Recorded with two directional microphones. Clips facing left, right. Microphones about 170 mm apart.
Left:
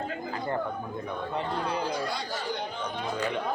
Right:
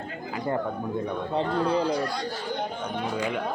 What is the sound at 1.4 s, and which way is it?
Speech, 30° right (ahead or behind).